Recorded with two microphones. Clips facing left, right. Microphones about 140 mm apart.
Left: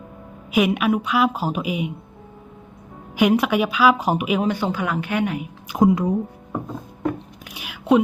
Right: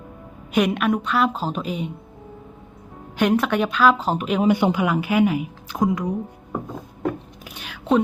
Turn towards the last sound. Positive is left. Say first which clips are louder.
# left 3 dB
turn(degrees=10)  # may be behind; listen again after turning